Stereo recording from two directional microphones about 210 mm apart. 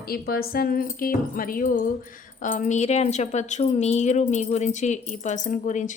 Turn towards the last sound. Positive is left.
turn(degrees=35)  # may be behind; listen again after turning